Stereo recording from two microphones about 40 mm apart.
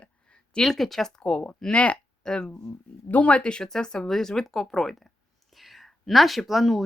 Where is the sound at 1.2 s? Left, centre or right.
Left.